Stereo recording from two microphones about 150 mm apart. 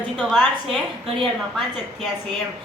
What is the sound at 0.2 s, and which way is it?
Speech, 5° right (ahead or behind).